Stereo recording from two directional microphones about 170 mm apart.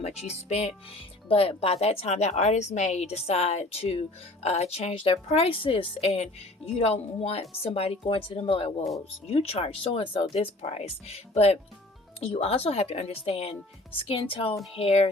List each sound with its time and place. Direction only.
0.0 s music: 40° left (ahead or behind)
0.4 s a woman's voice: 40° left (ahead or behind)